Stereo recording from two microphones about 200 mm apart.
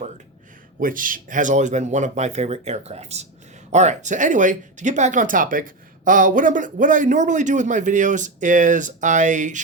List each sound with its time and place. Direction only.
0.8 s speech: 45° right (ahead or behind)